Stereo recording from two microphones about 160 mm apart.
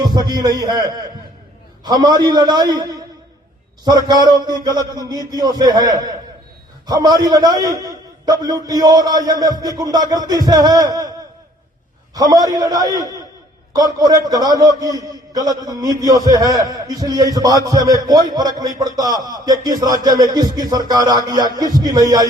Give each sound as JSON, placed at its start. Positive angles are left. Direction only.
{"t": 0.0, "sound": "a man's voice", "side_deg": -25}
{"t": 12.1, "sound": "a man's voice", "side_deg": -25}